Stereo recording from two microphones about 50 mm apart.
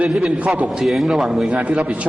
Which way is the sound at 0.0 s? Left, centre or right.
Right.